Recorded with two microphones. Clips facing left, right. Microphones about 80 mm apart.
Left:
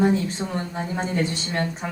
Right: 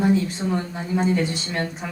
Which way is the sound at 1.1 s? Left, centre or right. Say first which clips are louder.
Right 1 dB; left.